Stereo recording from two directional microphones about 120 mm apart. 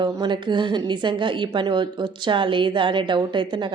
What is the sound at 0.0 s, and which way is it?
Speech, 40° right (ahead or behind).